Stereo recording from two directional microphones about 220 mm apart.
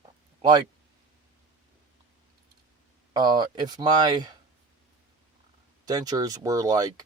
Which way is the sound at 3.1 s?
20° right (ahead or behind).